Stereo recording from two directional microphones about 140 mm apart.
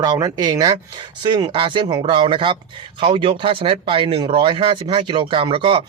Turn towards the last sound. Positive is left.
turn(degrees=-40)  # may be behind; listen again after turning